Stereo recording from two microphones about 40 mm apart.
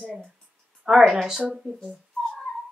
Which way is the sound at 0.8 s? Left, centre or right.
Centre.